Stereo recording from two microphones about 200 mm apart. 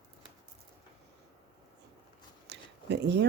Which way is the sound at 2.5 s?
55° right (ahead or behind).